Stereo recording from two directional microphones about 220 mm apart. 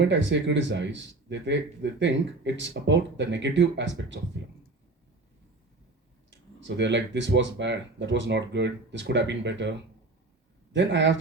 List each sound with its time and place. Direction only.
0.0 s speech: 55° right (ahead or behind)
6.6 s speech: 55° right (ahead or behind)